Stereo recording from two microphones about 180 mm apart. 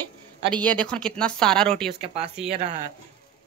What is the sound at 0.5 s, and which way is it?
A woman's voice, 5° left (ahead or behind).